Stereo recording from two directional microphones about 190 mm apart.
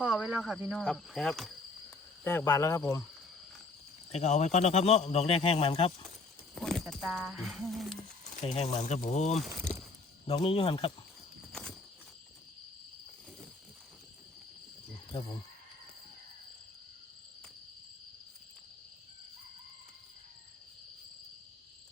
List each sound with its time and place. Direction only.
0.0 s cricket: 5° right (ahead or behind)
2.2 s speech: 15° left (ahead or behind)
4.1 s a man's voice: 35° left (ahead or behind)
6.6 s speech: 5° left (ahead or behind)
8.4 s a man's voice: 35° left (ahead or behind)
15.1 s speech: 20° left (ahead or behind)